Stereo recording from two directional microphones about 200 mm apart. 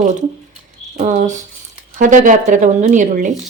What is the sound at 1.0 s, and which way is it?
Speech, 35° right (ahead or behind).